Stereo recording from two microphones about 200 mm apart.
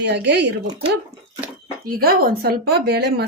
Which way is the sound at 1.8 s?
50° right (ahead or behind).